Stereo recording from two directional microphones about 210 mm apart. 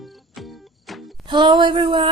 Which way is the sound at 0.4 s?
Centre (ahead or behind).